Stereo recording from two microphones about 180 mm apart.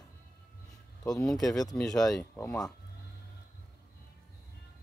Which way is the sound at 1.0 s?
20° left (ahead or behind).